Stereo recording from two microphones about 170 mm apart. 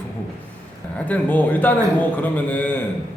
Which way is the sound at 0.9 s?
10° left (ahead or behind).